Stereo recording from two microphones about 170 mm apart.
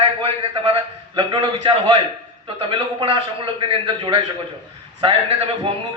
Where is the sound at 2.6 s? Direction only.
30° right (ahead or behind).